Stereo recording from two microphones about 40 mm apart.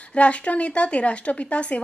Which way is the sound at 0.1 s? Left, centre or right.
Left.